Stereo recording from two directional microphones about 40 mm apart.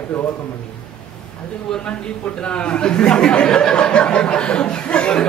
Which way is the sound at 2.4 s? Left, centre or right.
Left.